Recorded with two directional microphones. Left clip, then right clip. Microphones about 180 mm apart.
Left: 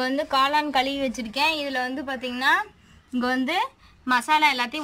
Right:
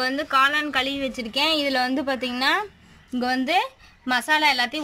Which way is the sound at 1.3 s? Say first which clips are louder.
Right 3 dB; 25° right (ahead or behind).